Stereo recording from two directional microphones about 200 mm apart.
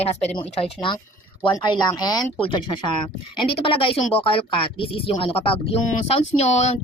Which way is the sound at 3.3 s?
25° left (ahead or behind).